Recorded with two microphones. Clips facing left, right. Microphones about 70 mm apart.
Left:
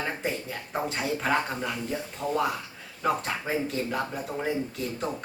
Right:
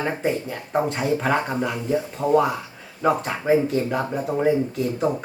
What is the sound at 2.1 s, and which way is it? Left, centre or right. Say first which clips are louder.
Speech: right 11 dB; centre.